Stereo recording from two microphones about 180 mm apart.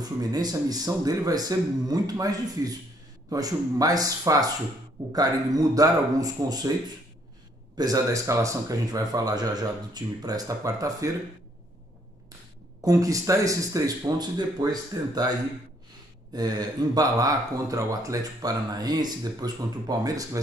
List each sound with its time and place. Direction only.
0.0 s speech: 20° right (ahead or behind)
7.7 s speech: 20° right (ahead or behind)
12.8 s speech: 20° right (ahead or behind)
16.3 s speech: 20° right (ahead or behind)